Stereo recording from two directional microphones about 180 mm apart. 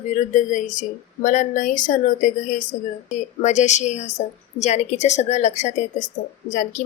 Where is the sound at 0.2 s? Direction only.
45° left (ahead or behind).